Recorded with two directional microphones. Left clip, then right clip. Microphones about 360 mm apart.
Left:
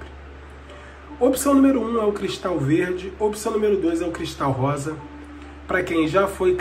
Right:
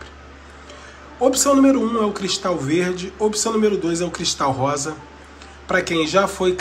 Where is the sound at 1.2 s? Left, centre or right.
Centre.